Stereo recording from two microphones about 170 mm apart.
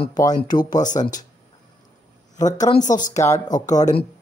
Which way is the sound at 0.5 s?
25° left (ahead or behind).